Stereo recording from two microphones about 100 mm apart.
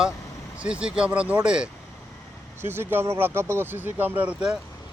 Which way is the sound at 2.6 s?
25° right (ahead or behind).